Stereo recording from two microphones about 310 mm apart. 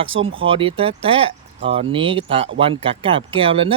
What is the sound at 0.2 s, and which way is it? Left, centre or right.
Speech, centre.